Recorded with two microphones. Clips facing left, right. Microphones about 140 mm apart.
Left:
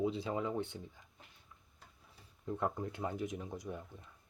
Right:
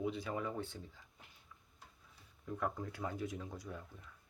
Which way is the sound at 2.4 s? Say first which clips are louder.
Left 3 dB; 25° left (ahead or behind).